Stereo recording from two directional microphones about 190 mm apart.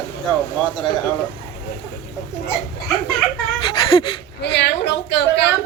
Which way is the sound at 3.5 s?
25° left (ahead or behind).